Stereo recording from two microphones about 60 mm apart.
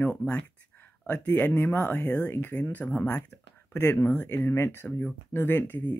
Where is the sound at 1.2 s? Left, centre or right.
Left.